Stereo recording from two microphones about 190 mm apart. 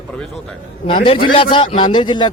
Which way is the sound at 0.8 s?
25° left (ahead or behind).